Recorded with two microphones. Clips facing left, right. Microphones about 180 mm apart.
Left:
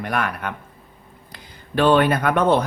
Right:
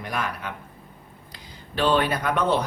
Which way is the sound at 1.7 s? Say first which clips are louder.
Left 6 dB; 55° left (ahead or behind).